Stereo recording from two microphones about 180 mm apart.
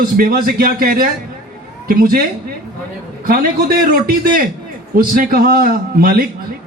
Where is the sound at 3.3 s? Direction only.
55° right (ahead or behind).